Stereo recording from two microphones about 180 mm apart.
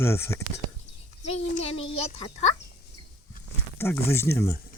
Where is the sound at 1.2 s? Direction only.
35° left (ahead or behind).